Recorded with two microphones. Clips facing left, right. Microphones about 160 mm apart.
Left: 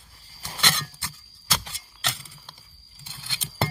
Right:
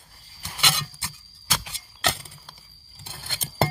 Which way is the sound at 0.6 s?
10° right (ahead or behind).